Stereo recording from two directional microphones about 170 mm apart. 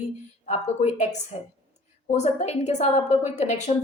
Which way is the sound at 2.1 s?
40° left (ahead or behind).